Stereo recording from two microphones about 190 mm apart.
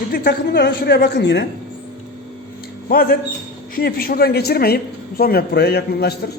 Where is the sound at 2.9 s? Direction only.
50° left (ahead or behind).